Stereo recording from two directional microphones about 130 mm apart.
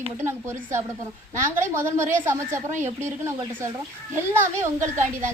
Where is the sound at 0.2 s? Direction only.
20° right (ahead or behind).